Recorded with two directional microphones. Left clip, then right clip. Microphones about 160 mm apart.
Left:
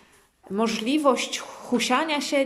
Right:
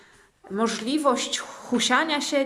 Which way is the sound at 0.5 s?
10° left (ahead or behind).